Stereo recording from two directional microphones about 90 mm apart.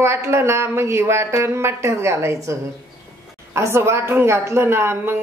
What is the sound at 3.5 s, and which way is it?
A woman's voice, 30° right (ahead or behind).